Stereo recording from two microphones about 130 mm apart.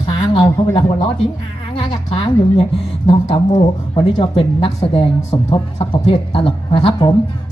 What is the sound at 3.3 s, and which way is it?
A man's voice, 35° left (ahead or behind).